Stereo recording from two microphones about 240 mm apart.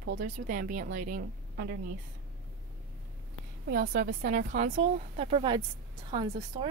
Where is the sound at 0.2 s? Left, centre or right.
Right.